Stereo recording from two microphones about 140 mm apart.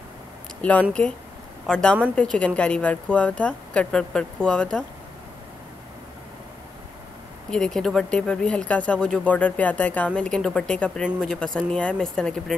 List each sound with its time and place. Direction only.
0.6 s speech: 10° left (ahead or behind)
7.5 s speech: 5° left (ahead or behind)